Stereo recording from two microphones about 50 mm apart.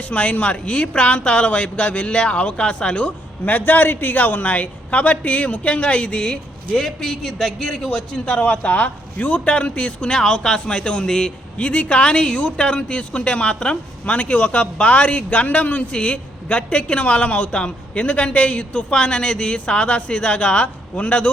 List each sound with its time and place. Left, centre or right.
0.1 s a man's voice: left; by 7.9 s centre
7.9 s a man's voice: centre
8.4 s a man's voice: left